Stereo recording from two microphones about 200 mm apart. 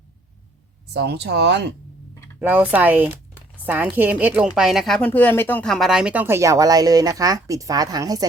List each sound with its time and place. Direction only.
0.9 s speech: 55° right (ahead or behind)
2.4 s speech: 10° right (ahead or behind)